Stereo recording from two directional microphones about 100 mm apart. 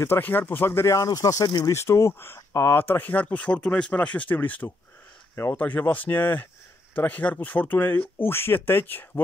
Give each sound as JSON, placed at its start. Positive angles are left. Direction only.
{"t": 0.0, "sound": "speech", "side_deg": 20}
{"t": 1.6, "sound": "speech", "side_deg": 25}